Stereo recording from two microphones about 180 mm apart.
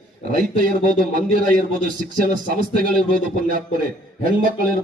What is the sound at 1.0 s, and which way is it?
Speech, 50° right (ahead or behind).